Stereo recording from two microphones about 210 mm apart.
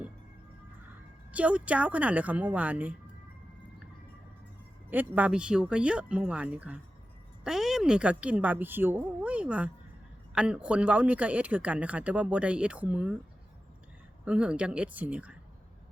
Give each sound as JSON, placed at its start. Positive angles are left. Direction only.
{"t": 1.3, "sound": "speech", "side_deg": -5}
{"t": 4.9, "sound": "speech", "side_deg": -10}
{"t": 14.3, "sound": "speech", "side_deg": -5}